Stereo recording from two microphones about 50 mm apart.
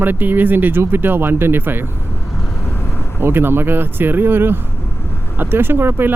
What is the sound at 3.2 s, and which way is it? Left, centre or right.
Speech, right.